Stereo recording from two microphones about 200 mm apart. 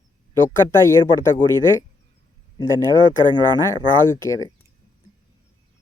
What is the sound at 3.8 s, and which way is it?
Speech, 15° left (ahead or behind).